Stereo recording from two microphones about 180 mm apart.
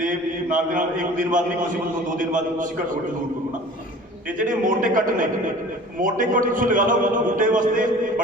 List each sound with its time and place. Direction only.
0.0 s a man's voice: 50° right (ahead or behind)
4.3 s a man's voice: 45° right (ahead or behind)